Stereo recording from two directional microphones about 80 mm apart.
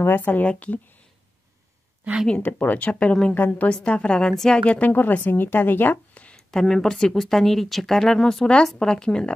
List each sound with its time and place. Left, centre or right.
0.0 s speech: left
2.2 s a woman's voice: centre